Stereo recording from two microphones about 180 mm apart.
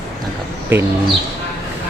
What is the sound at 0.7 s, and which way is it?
Speech, 10° right (ahead or behind).